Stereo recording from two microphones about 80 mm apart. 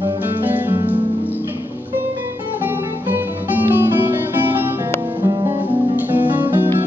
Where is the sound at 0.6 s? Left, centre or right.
Right.